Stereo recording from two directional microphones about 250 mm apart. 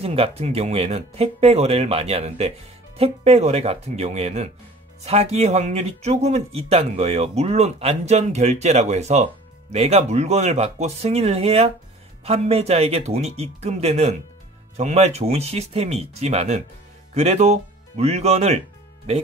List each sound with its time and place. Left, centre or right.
0.0 s speech: right